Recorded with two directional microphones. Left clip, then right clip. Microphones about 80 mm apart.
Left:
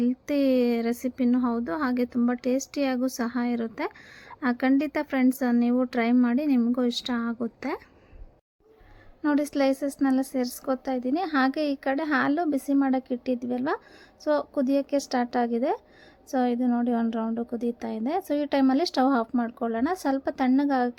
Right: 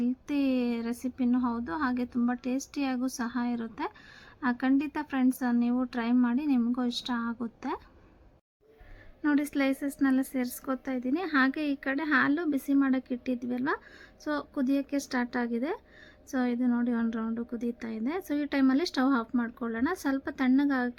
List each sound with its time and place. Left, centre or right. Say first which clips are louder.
0.0 s speech: left 5 dB; left
9.2 s a woman's voice: left 4 dB; left